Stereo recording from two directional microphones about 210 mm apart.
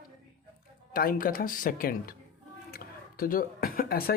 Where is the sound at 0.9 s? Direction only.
45° left (ahead or behind).